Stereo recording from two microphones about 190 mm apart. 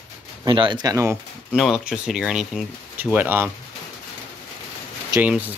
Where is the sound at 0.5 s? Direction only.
25° right (ahead or behind).